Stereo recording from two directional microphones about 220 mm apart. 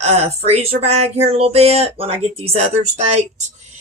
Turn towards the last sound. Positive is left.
turn(degrees=-30)  # may be behind; listen again after turning